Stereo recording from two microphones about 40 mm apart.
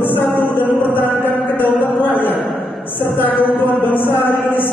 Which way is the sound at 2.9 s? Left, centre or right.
Left.